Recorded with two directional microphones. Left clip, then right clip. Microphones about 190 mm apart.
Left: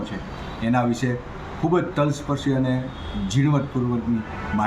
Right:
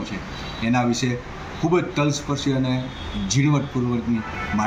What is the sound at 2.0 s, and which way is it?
Speech, 25° left (ahead or behind).